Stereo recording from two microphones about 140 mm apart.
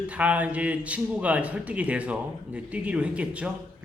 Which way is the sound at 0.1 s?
10° right (ahead or behind).